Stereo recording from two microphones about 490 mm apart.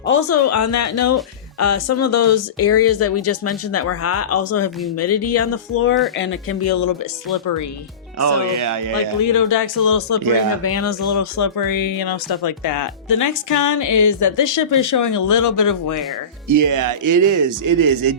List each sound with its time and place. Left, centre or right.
0.0 s speech: left
8.2 s speech: right
9.2 s speech: left
16.5 s speech: right